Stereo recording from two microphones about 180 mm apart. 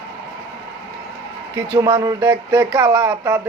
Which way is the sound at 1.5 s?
15° right (ahead or behind).